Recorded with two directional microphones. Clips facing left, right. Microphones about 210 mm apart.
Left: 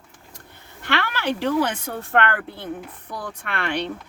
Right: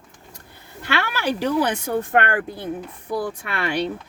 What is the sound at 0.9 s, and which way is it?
Speech, 10° right (ahead or behind).